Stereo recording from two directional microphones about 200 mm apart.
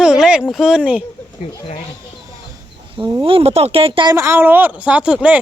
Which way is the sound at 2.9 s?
20° right (ahead or behind).